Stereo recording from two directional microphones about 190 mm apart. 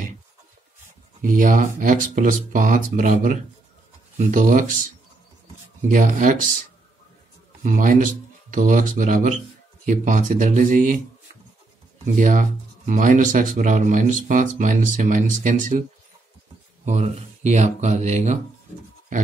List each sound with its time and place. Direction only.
1.2 s speech: 45° right (ahead or behind)
7.6 s speech: 45° right (ahead or behind)
12.2 s speech: 45° right (ahead or behind)
16.8 s speech: 35° right (ahead or behind)